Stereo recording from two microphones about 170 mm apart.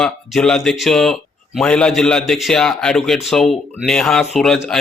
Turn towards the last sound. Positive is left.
turn(degrees=5)  # may be behind; listen again after turning